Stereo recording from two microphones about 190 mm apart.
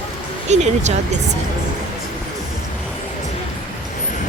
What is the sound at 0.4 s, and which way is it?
Speech, 35° right (ahead or behind).